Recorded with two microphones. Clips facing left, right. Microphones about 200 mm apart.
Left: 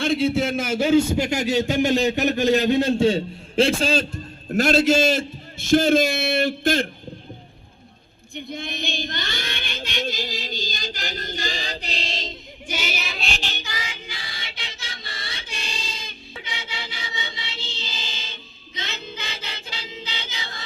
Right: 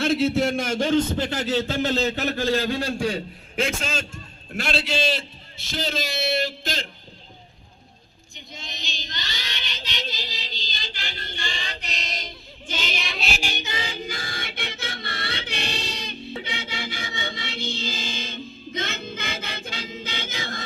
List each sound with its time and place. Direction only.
0.0 s a man's voice: centre (ahead or behind); by 6.8 s 55° left (ahead or behind)
8.4 s child singing: 55° left (ahead or behind); by 12.4 s 25° left (ahead or behind)
12.6 s child singing: 10° left (ahead or behind); by 13.7 s 10° right (ahead or behind)
13.7 s a sound: 30° right (ahead or behind); by 16.1 s 65° right (ahead or behind)
16.4 s music: 55° right (ahead or behind)